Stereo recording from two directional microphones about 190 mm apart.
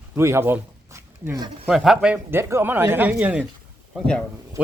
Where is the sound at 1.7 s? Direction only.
5° right (ahead or behind).